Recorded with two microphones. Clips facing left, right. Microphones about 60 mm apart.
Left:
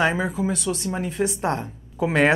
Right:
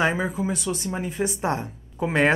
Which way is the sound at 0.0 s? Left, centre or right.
Centre.